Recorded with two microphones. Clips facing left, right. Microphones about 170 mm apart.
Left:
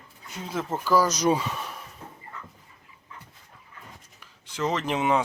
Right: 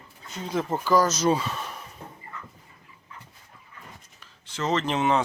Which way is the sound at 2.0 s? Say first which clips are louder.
Right 1 dB; 35° right (ahead or behind).